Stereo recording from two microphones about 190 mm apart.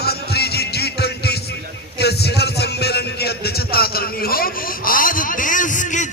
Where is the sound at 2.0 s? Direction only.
60° left (ahead or behind).